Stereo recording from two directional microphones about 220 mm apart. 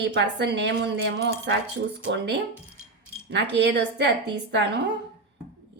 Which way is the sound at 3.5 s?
50° right (ahead or behind).